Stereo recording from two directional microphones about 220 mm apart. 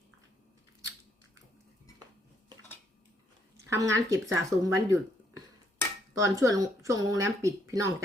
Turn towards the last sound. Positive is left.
turn(degrees=-15)  # may be behind; listen again after turning